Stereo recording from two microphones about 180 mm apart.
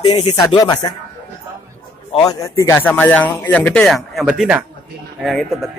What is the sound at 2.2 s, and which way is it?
Speech, 15° left (ahead or behind).